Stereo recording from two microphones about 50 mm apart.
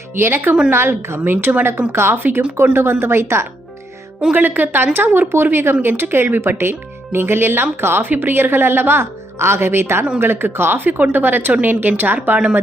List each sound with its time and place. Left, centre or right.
0.1 s speech: right
1.9 s speech: right
4.4 s speech: right